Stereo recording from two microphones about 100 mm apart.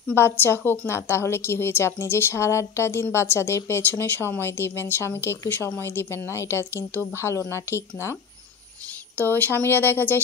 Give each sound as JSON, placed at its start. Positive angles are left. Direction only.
{"t": 0.1, "sound": "a woman's voice", "side_deg": 25}
{"t": 9.2, "sound": "a woman's voice", "side_deg": 20}